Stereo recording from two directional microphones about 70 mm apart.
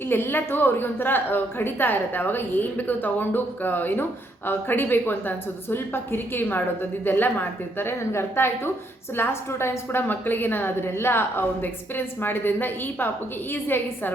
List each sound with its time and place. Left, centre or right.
0.1 s a woman's voice: left